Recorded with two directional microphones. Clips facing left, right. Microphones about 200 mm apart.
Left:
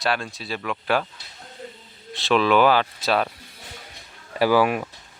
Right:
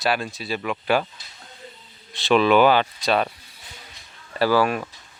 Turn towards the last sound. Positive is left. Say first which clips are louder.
# left 1 dB
turn(degrees=15)  # may be behind; listen again after turning